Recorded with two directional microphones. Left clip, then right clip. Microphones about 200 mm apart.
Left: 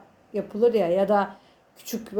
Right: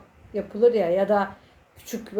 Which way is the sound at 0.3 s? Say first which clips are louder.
Right 1 dB; 35° left (ahead or behind).